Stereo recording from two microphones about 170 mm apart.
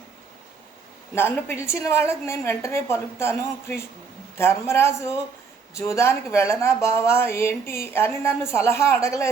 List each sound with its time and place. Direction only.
1.1 s speech: 15° left (ahead or behind)
4.4 s speech: 15° left (ahead or behind)